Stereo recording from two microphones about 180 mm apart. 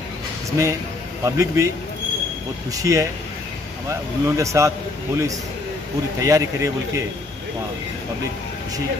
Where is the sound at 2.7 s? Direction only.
20° right (ahead or behind).